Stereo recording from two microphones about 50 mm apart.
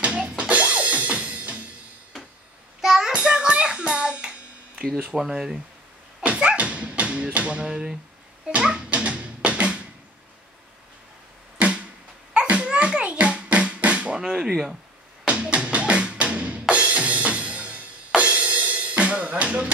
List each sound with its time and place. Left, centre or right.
0.0 s music: right
2.8 s child singing: centre
3.1 s music: centre
4.9 s speech: centre
6.2 s dog: right
8.5 s a sound: centre
11.5 s a sound: right
14.1 s speech: centre
15.2 s music: right